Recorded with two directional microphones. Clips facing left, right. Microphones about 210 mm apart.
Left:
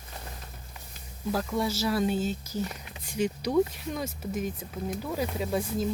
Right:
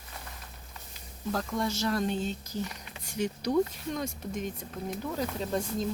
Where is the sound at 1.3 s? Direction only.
5° left (ahead or behind).